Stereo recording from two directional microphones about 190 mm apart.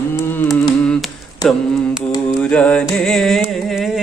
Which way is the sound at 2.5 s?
5° left (ahead or behind).